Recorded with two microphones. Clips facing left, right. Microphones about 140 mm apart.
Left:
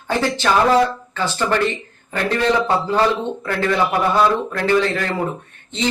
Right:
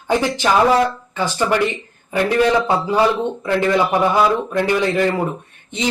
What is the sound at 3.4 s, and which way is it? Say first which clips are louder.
Speech: right 3 dB; 15° right (ahead or behind).